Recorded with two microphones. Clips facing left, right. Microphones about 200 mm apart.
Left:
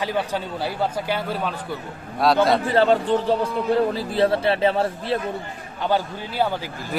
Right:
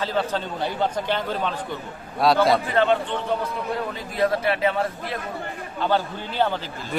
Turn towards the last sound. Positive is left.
turn(degrees=10)  # may be behind; listen again after turning